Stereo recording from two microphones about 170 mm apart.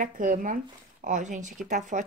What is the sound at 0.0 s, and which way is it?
Speech, 50° right (ahead or behind).